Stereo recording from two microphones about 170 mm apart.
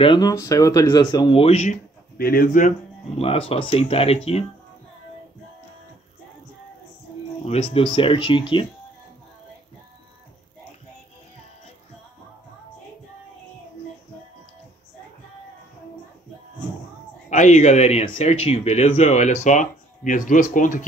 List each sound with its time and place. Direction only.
0.0 s speech: 25° left (ahead or behind)
2.1 s speech: 60° left (ahead or behind)
3.2 s speech: 35° left (ahead or behind)
7.4 s speech: 35° left (ahead or behind)
17.3 s speech: 45° left (ahead or behind)